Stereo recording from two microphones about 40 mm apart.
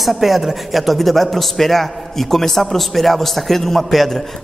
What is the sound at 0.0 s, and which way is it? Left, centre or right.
Speech, centre.